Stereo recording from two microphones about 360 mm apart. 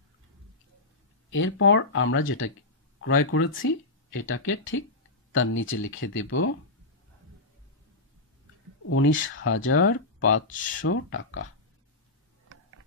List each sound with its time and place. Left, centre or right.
1.3 s speech: left
8.8 s speech: left